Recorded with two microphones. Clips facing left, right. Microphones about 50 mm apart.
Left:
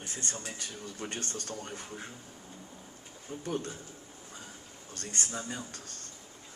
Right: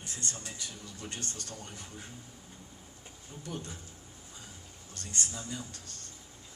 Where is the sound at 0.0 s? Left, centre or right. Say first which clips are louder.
Left 2 dB; left.